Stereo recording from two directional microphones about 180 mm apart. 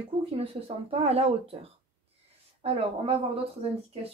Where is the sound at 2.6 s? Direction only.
30° right (ahead or behind).